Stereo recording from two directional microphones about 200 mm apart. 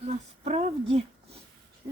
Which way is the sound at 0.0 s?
30° right (ahead or behind).